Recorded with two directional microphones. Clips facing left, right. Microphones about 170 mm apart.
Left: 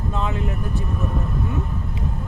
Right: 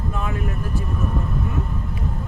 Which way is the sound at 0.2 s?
20° left (ahead or behind).